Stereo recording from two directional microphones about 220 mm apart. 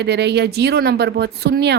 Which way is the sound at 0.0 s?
50° right (ahead or behind).